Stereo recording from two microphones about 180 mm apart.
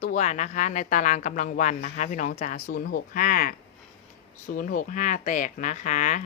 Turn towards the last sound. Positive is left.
turn(degrees=45)  # may be behind; listen again after turning